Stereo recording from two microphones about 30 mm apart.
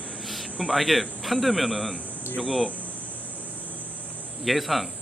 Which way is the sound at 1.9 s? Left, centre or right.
Right.